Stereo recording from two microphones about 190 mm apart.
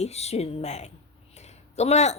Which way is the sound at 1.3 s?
35° left (ahead or behind).